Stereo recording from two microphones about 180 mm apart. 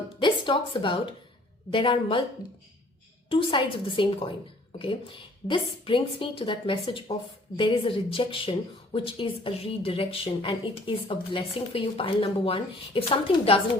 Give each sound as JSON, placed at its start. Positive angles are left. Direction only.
{"t": 0.2, "sound": "a sound", "side_deg": 25}
{"t": 1.7, "sound": "speech", "side_deg": 30}
{"t": 3.2, "sound": "speech", "side_deg": 30}